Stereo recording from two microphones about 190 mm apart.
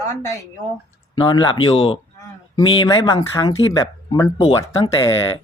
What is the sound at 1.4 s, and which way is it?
Speech, 25° left (ahead or behind).